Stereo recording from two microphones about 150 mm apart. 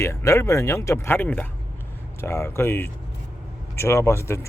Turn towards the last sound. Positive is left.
turn(degrees=15)  # may be behind; listen again after turning